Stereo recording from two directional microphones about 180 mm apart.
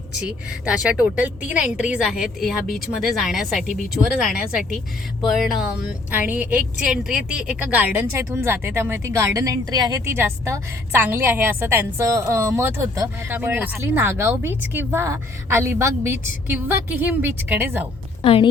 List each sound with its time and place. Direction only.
0.2 s a woman's voice: 5° right (ahead or behind)
18.2 s a woman's voice: 30° left (ahead or behind)